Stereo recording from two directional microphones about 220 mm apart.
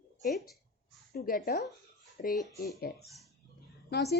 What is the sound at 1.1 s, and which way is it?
A woman's voice, 40° left (ahead or behind).